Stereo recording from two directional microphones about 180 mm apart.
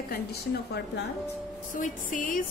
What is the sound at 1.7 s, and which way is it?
Speech, 45° left (ahead or behind).